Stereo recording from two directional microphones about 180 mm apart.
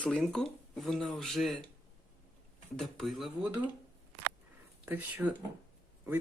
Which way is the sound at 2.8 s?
Centre (ahead or behind).